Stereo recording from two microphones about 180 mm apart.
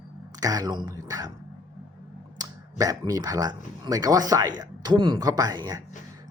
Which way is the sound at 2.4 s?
20° right (ahead or behind).